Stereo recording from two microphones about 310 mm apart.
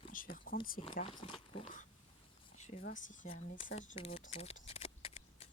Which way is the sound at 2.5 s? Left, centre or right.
Left.